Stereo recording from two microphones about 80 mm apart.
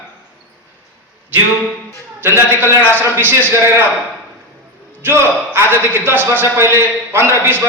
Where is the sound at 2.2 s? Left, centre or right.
Right.